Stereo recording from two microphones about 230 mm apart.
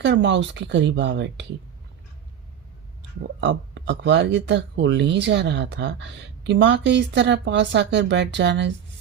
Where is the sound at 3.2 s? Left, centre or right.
Right.